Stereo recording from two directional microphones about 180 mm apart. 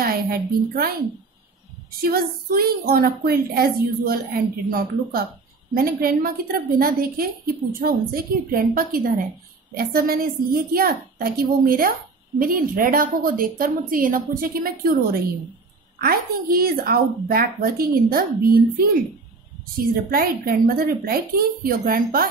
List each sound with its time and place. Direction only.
0.0 s a woman's voice: 55° right (ahead or behind)
16.0 s a woman's voice: 55° right (ahead or behind)
20.1 s a woman's voice: 55° right (ahead or behind)